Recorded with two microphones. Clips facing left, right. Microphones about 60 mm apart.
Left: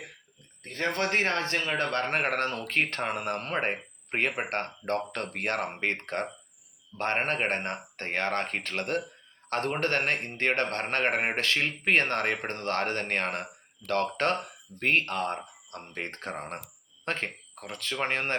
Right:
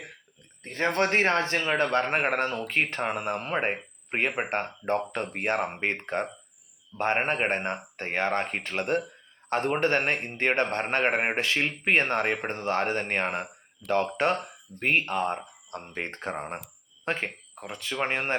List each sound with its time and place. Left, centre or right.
0.6 s a man's voice: right; by 18.3 s centre